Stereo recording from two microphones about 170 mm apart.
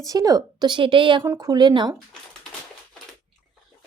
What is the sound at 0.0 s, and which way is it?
Speech, 20° right (ahead or behind).